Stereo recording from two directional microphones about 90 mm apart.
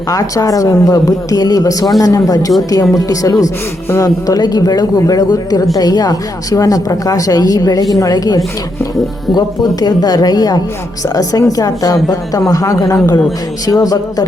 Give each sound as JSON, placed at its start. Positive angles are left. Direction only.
{"t": 0.1, "sound": "a woman's voice", "side_deg": 40}
{"t": 9.8, "sound": "a woman's voice", "side_deg": 45}